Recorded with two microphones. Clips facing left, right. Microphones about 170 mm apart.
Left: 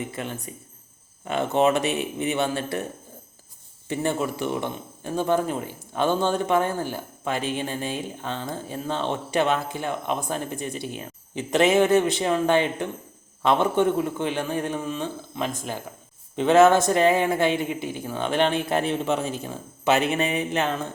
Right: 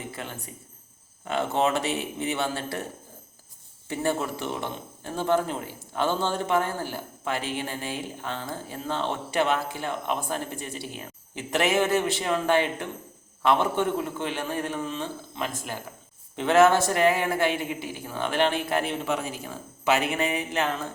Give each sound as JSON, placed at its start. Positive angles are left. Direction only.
{"t": 0.1, "sound": "speech", "side_deg": 20}
{"t": 3.8, "sound": "a man's voice", "side_deg": 20}